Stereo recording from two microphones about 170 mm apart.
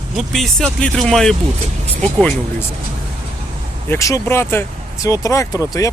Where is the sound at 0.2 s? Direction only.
5° left (ahead or behind).